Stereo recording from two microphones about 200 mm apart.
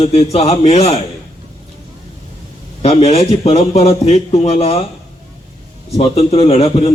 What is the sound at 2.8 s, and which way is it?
A man's voice, 30° left (ahead or behind).